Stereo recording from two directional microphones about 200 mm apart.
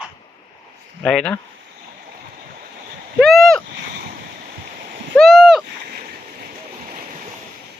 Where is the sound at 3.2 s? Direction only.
Centre (ahead or behind).